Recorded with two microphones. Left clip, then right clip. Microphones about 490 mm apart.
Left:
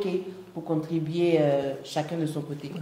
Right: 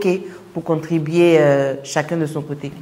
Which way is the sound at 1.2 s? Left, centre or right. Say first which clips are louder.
Right 11 dB; right.